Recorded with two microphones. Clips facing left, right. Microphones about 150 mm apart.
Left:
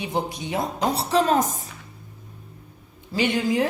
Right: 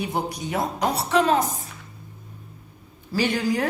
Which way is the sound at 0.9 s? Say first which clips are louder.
Even; 35° left (ahead or behind).